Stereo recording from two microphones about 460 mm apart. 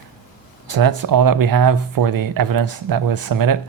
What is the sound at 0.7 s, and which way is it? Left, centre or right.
Speech, right.